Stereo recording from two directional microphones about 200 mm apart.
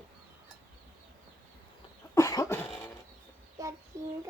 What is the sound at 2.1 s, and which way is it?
Cough, 15° left (ahead or behind).